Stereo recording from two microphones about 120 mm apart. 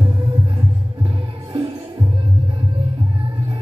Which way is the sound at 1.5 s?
45° right (ahead or behind).